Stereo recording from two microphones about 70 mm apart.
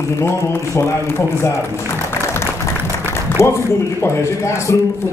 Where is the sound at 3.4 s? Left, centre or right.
Left.